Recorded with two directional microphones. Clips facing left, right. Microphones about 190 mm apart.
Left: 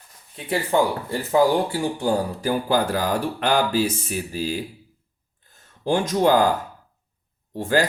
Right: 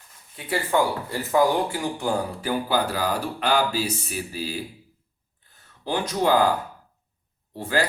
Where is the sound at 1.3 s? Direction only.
30° left (ahead or behind).